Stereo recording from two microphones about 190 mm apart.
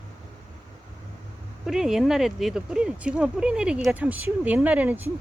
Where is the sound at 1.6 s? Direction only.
5° right (ahead or behind).